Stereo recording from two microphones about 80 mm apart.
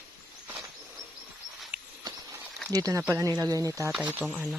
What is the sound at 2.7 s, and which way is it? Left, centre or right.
Speech, right.